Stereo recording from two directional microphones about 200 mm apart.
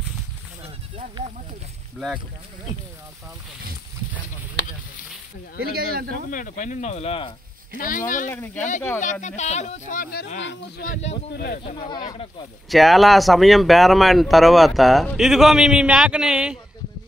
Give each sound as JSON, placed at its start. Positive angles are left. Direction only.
{"t": 5.6, "sound": "speech", "side_deg": -50}
{"t": 6.3, "sound": "speech", "side_deg": 40}
{"t": 7.7, "sound": "speech", "side_deg": 45}
{"t": 11.3, "sound": "speech", "side_deg": 50}
{"t": 11.6, "sound": "speech", "side_deg": 30}
{"t": 12.6, "sound": "speech", "side_deg": 0}